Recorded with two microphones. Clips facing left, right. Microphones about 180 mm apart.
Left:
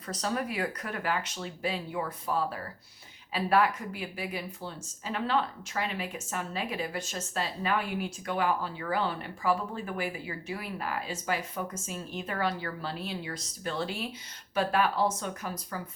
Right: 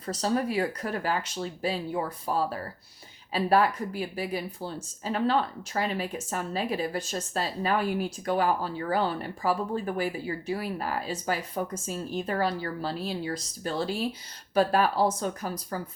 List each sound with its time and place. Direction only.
0.1 s a woman's voice: 30° right (ahead or behind)